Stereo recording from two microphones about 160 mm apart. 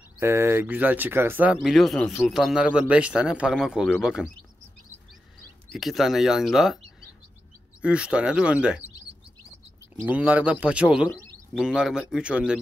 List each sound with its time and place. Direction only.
0.2 s speech: 15° right (ahead or behind)
5.7 s speech: centre (ahead or behind)
7.8 s speech: 5° right (ahead or behind)
10.0 s speech: 10° right (ahead or behind)